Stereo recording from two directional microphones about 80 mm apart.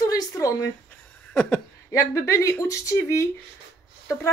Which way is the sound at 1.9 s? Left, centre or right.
Left.